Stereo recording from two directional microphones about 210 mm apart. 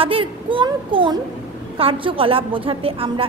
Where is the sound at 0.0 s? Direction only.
25° right (ahead or behind).